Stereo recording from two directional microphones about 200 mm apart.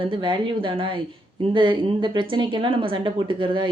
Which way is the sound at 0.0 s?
25° right (ahead or behind).